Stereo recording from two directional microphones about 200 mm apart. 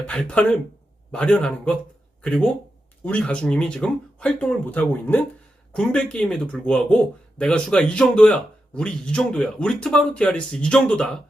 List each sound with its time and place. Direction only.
0.1 s speech: 5° left (ahead or behind)